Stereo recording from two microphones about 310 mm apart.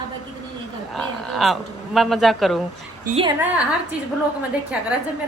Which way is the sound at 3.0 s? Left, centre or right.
Centre.